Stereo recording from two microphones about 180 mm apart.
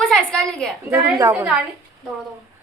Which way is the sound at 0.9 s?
15° right (ahead or behind).